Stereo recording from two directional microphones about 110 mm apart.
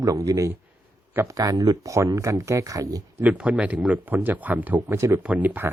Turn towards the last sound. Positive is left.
turn(degrees=-15)  # may be behind; listen again after turning